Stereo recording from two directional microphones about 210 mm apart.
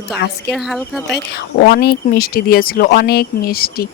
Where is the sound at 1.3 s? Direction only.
50° left (ahead or behind).